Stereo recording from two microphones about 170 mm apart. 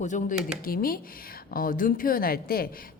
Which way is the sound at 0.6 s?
60° left (ahead or behind).